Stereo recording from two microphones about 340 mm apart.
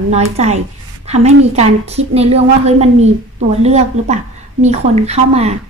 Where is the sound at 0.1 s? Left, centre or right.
Centre.